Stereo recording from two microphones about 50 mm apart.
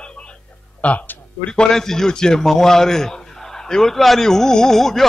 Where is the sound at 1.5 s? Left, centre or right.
Centre.